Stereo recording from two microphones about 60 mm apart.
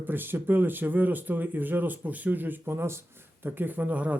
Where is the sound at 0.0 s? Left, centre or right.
Right.